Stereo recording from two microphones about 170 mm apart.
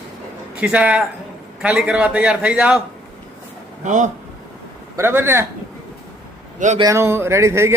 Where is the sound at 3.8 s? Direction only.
45° right (ahead or behind).